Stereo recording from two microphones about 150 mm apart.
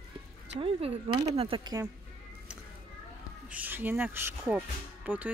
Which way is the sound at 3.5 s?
10° right (ahead or behind).